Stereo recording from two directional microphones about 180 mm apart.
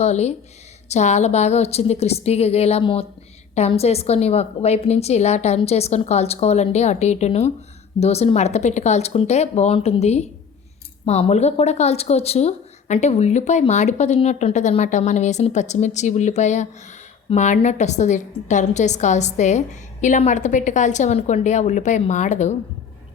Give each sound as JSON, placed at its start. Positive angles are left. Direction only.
{"t": 0.0, "sound": "speech", "side_deg": 35}